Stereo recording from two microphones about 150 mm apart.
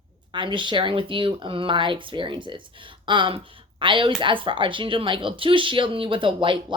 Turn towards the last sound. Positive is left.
turn(degrees=-35)  # may be behind; listen again after turning